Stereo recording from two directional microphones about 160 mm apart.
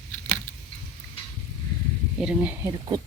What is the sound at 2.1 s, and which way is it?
Speech, 5° right (ahead or behind).